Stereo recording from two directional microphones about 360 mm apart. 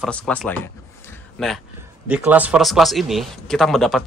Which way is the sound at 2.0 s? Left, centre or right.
Centre.